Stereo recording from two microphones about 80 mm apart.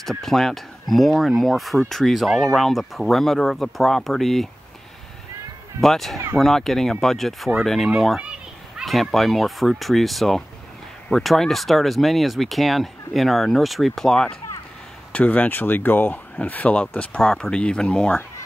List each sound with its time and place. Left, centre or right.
0.0 s speech: centre
5.8 s speech: centre
8.2 s children playing: centre
8.8 s speech: centre
15.1 s speech: centre